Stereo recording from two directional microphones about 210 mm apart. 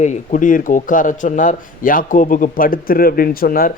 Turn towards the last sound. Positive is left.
turn(degrees=45)  # may be behind; listen again after turning